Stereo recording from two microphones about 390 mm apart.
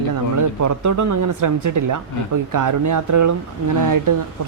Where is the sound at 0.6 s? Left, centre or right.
Right.